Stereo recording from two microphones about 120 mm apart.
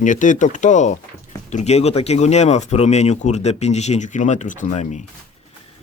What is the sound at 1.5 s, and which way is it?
Speech, 65° left (ahead or behind).